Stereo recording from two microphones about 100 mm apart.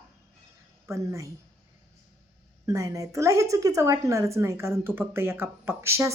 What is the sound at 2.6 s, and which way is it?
A woman's voice, 30° right (ahead or behind).